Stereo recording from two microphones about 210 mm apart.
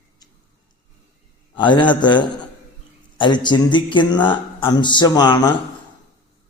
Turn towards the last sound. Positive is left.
turn(degrees=20)  # may be behind; listen again after turning